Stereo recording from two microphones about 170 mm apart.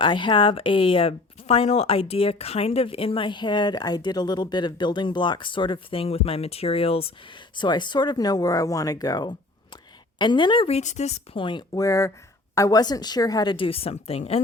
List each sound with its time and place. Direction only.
0.0 s speech: 30° left (ahead or behind)